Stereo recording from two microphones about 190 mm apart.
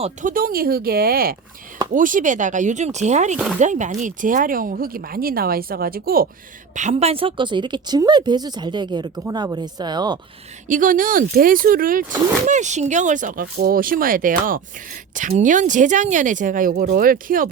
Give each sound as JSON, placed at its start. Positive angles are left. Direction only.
{"t": 0.0, "sound": "speech", "side_deg": -40}
{"t": 3.3, "sound": "speech", "side_deg": -5}
{"t": 3.6, "sound": "speech", "side_deg": -40}
{"t": 6.7, "sound": "a woman's voice", "side_deg": -35}
{"t": 10.7, "sound": "speech", "side_deg": -45}